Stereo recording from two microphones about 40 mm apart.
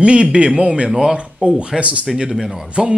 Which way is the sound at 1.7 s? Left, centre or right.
Right.